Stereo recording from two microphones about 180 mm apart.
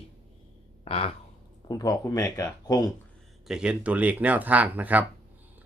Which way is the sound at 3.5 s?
5° right (ahead or behind).